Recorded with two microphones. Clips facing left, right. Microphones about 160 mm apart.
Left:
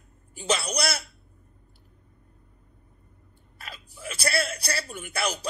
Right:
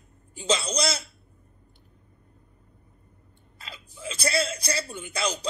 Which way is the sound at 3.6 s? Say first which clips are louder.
Right 1 dB; 20° right (ahead or behind).